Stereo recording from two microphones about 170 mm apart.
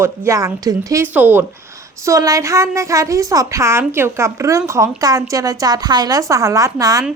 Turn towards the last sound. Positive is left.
turn(degrees=-20)  # may be behind; listen again after turning